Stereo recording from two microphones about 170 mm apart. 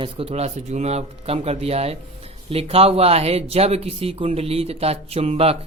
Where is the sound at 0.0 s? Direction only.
35° right (ahead or behind).